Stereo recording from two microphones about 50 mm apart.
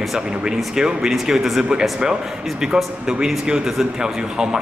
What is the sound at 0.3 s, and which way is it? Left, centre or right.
Speech, centre.